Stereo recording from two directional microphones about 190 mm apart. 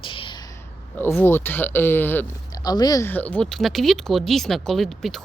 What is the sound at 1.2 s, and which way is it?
Speech, 10° left (ahead or behind).